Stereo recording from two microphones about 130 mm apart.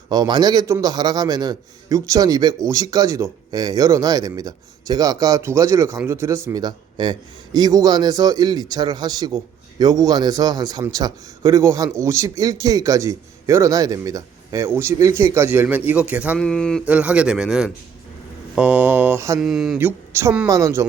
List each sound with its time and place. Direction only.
0.1 s a man's voice: 30° right (ahead or behind); by 16.4 s 10° right (ahead or behind)
16.4 s speech: 5° left (ahead or behind)
16.8 s a man's voice: 10° right (ahead or behind)
19.4 s a sound: 5° right (ahead or behind)
19.8 s a man's voice: 20° right (ahead or behind)